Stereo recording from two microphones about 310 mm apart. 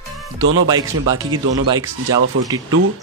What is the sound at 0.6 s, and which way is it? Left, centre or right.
Speech, centre.